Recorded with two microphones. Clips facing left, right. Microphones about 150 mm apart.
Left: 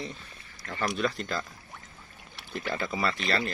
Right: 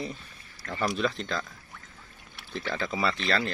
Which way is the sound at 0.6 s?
15° left (ahead or behind).